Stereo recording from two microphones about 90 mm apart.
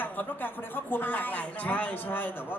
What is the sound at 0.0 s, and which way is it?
A man's voice, 20° left (ahead or behind).